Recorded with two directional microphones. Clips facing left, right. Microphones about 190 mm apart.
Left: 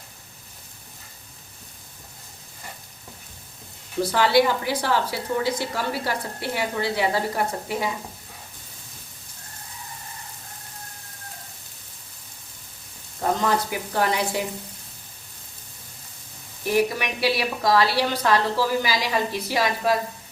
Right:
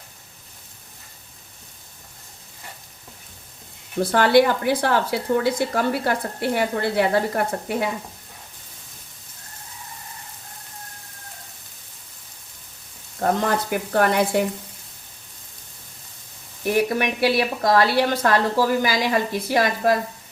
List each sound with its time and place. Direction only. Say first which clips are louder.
4.0 s a woman's voice: right 3 dB; 55° right (ahead or behind)
13.2 s speech: right 2 dB; 55° right (ahead or behind)
16.6 s a woman's voice: right 2 dB; 50° right (ahead or behind)